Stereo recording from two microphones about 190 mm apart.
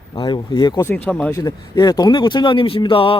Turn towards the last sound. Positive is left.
turn(degrees=30)  # may be behind; listen again after turning